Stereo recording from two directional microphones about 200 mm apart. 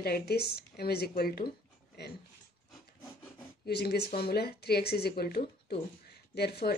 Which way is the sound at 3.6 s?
55° left (ahead or behind).